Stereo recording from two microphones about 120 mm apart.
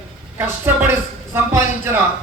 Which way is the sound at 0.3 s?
20° right (ahead or behind).